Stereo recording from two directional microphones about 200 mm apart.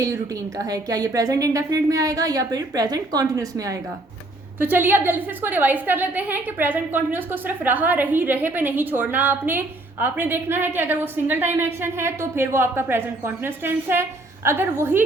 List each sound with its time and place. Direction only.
0.6 s a woman's voice: 20° right (ahead or behind)